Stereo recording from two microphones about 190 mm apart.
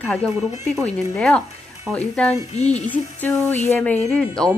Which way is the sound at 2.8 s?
10° left (ahead or behind).